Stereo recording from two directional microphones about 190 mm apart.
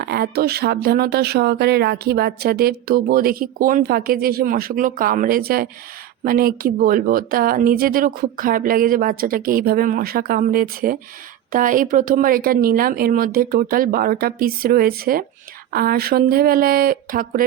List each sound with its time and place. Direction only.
0.0 s speech: 55° right (ahead or behind)